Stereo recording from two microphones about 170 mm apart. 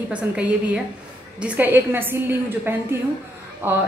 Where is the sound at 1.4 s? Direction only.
10° right (ahead or behind).